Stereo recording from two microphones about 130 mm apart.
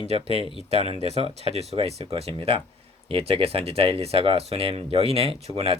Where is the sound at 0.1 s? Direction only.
50° right (ahead or behind).